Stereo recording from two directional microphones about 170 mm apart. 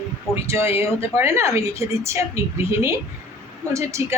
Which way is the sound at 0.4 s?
15° right (ahead or behind).